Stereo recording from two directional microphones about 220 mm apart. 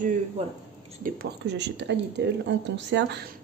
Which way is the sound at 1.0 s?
50° right (ahead or behind).